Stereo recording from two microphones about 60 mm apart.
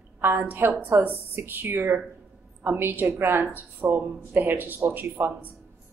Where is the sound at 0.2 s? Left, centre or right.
Right.